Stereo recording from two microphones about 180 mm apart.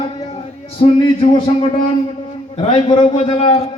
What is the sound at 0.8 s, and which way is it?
Speech, 30° left (ahead or behind).